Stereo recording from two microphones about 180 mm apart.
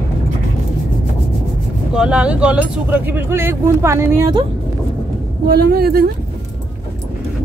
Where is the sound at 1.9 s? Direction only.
5° right (ahead or behind).